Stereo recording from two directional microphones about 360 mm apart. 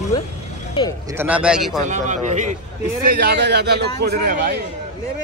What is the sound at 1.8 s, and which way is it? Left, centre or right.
A man's voice, centre.